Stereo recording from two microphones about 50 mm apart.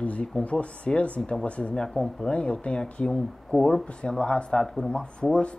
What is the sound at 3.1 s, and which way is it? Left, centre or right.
Speech, centre.